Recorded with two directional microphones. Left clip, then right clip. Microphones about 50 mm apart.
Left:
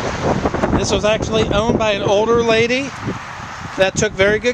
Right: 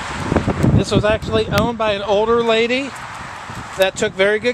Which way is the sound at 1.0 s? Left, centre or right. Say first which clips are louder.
Even; left.